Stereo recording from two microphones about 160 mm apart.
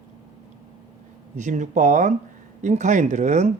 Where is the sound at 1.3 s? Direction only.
50° right (ahead or behind).